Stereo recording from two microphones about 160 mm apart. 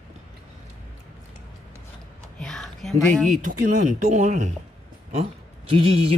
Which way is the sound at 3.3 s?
55° right (ahead or behind).